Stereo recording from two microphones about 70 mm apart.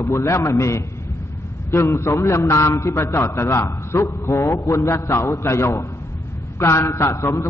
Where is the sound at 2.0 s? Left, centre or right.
Left.